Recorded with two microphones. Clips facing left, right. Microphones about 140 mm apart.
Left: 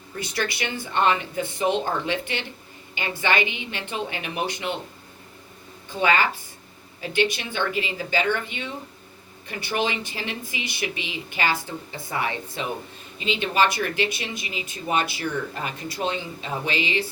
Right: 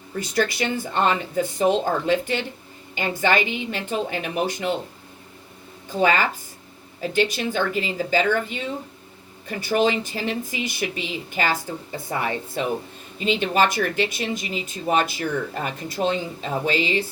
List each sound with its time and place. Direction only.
0.2 s speech: 45° right (ahead or behind)
6.0 s a woman's voice: 40° right (ahead or behind)